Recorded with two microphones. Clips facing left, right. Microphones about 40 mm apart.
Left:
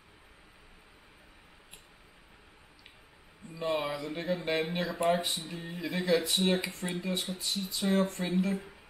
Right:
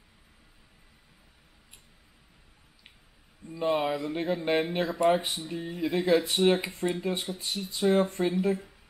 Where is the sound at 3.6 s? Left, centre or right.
Centre.